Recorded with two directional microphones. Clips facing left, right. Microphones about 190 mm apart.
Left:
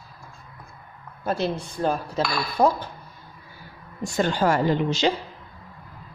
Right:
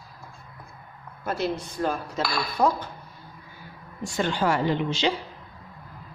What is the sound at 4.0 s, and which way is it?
A woman's voice, 45° left (ahead or behind).